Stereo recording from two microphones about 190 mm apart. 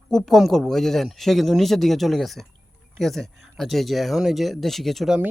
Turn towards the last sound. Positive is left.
turn(degrees=-5)  # may be behind; listen again after turning